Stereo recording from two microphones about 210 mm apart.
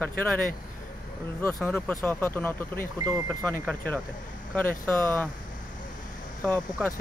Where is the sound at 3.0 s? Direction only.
15° right (ahead or behind).